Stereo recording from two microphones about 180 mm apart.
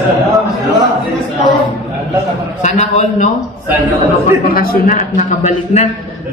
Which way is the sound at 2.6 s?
40° left (ahead or behind).